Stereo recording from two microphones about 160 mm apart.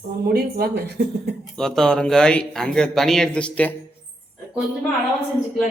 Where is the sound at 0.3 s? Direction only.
75° right (ahead or behind).